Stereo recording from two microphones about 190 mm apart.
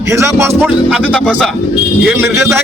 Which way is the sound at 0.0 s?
15° right (ahead or behind).